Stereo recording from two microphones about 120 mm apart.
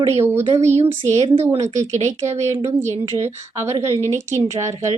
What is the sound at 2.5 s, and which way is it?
Speech, 20° right (ahead or behind).